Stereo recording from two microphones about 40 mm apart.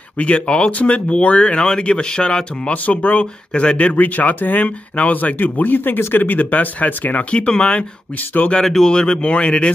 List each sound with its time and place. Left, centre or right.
0.2 s speech: left
2.7 s speech: left
7.2 s speech: left
8.6 s speech: centre
8.9 s speech: left